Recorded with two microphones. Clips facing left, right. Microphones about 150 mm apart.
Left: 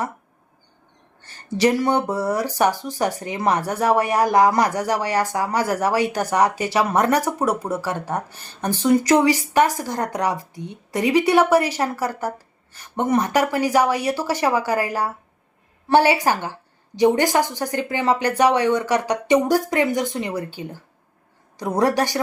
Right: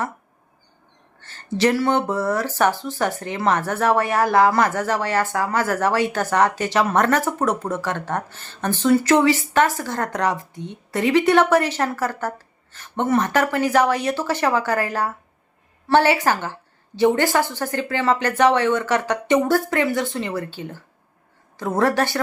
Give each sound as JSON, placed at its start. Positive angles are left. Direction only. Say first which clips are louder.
{"t": 1.2, "sound": "speech", "louder": "left 1 dB", "side_deg": 15}